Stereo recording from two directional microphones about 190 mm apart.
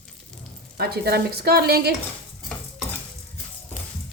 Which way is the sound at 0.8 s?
55° right (ahead or behind).